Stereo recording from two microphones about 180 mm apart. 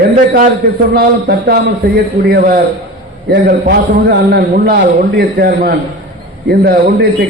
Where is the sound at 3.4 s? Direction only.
60° right (ahead or behind).